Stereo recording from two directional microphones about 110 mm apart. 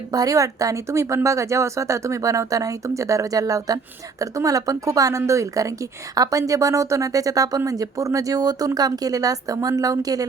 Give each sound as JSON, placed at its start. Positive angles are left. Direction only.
{"t": 0.1, "sound": "a woman's voice", "side_deg": -30}